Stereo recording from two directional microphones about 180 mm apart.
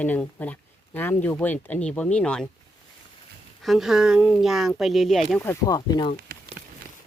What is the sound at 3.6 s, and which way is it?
Speech, centre (ahead or behind).